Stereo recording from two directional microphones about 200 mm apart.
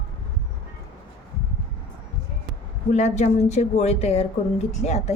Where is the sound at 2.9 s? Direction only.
35° left (ahead or behind).